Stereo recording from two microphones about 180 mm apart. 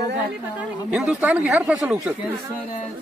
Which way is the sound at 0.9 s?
5° right (ahead or behind).